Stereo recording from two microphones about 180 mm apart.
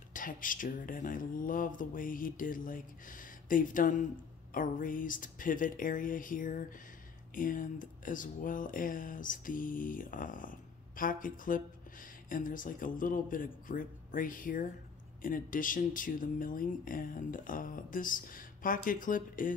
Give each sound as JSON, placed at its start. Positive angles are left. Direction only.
{"t": 0.1, "sound": "speech", "side_deg": 50}